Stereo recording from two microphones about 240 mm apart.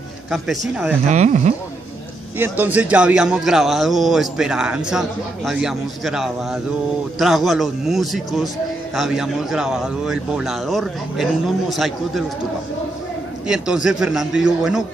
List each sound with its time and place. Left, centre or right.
1.0 s speech: right
2.3 s a man's voice: centre
13.5 s a man's voice: centre